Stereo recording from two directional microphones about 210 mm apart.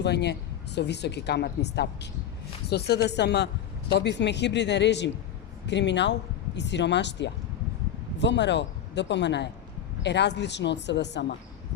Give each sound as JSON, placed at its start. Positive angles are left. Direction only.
{"t": 0.0, "sound": "a woman's voice", "side_deg": 55}